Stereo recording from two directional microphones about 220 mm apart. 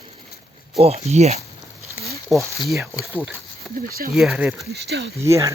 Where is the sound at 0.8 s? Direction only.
30° right (ahead or behind).